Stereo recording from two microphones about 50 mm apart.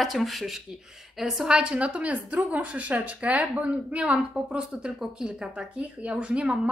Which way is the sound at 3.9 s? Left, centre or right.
Centre.